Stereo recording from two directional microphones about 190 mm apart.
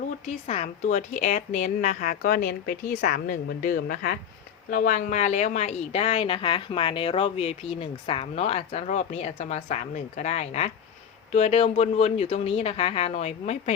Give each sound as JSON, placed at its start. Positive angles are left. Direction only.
{"t": 0.3, "sound": "a woman's voice", "side_deg": 35}